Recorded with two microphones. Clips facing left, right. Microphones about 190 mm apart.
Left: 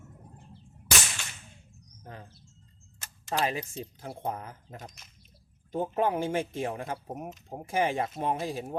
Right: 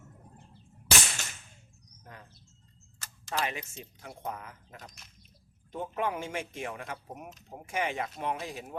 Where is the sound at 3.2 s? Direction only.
35° left (ahead or behind).